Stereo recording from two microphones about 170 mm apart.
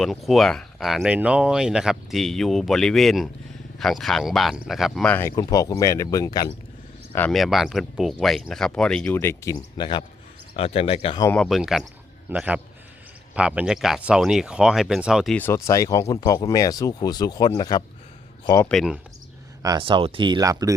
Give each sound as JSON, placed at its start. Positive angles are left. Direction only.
{"t": 0.0, "sound": "speech", "side_deg": 0}
{"t": 5.3, "sound": "speech", "side_deg": 20}
{"t": 7.3, "sound": "speech", "side_deg": 0}
{"t": 11.3, "sound": "a man's voice", "side_deg": 0}
{"t": 15.4, "sound": "speech", "side_deg": 15}
{"t": 18.7, "sound": "speech", "side_deg": 0}
{"t": 19.6, "sound": "speech", "side_deg": -25}